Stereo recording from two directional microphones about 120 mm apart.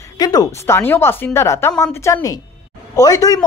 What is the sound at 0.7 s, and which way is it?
Speech, 20° left (ahead or behind).